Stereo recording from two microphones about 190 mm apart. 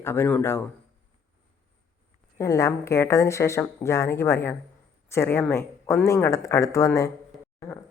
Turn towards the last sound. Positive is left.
turn(degrees=15)  # may be behind; listen again after turning